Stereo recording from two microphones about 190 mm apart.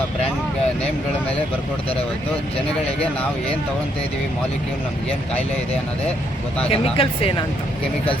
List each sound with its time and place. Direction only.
6.7 s speech: 30° left (ahead or behind)